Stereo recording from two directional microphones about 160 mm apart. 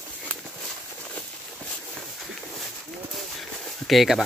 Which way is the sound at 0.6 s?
5° left (ahead or behind).